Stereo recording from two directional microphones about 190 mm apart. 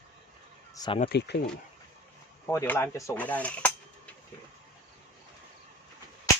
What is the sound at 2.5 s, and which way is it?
Speech, 15° left (ahead or behind).